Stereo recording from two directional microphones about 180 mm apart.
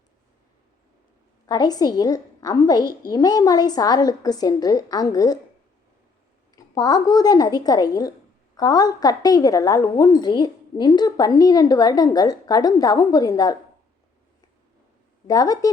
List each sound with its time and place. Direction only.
1.5 s a woman's voice: 20° left (ahead or behind)
6.6 s a woman's voice: 20° left (ahead or behind)
15.3 s a woman's voice: 20° left (ahead or behind)